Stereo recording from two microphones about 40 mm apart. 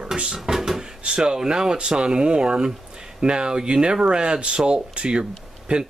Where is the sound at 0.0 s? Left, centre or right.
Right.